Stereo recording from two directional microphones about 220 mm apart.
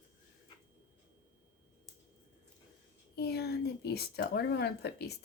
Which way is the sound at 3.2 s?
45° left (ahead or behind).